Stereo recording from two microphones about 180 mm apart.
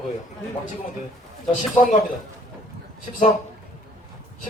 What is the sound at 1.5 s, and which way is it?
Speech, 40° left (ahead or behind).